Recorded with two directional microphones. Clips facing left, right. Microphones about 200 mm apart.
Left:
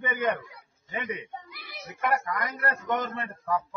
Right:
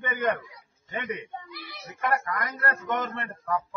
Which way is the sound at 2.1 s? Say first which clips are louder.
Even; 15° left (ahead or behind).